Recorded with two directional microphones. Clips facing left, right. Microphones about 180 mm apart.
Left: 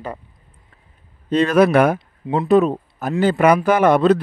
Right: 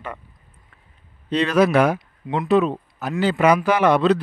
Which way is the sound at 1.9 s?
30° left (ahead or behind).